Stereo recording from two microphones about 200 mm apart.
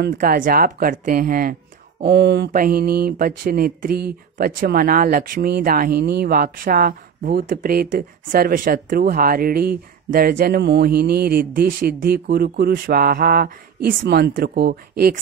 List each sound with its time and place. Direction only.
0.1 s speech: 45° right (ahead or behind)
2.5 s speech: 45° right (ahead or behind)